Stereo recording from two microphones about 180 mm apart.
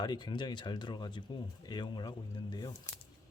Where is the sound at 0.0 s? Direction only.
25° left (ahead or behind).